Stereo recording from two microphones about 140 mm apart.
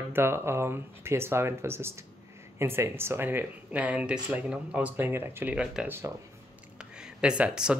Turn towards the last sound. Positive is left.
turn(degrees=-5)  # may be behind; listen again after turning